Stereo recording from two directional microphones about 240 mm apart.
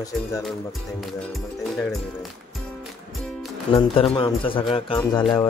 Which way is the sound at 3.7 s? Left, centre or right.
Left.